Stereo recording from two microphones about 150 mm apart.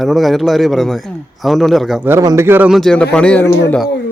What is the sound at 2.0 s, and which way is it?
Speech, 20° right (ahead or behind).